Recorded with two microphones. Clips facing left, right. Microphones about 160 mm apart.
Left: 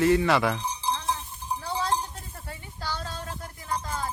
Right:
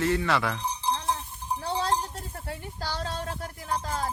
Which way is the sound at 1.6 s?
30° right (ahead or behind).